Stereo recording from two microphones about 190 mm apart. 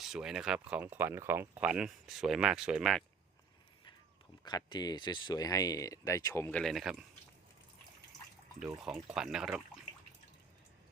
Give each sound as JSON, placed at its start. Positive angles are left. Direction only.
{"t": 0.0, "sound": "speech", "side_deg": 0}
{"t": 4.4, "sound": "speech", "side_deg": 20}
{"t": 9.0, "sound": "speech", "side_deg": -5}